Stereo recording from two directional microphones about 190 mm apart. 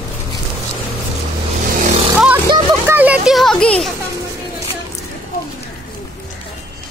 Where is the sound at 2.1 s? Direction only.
5° right (ahead or behind).